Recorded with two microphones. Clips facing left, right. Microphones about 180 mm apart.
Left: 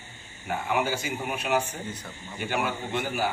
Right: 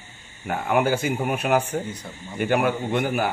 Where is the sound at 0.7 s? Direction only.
55° right (ahead or behind).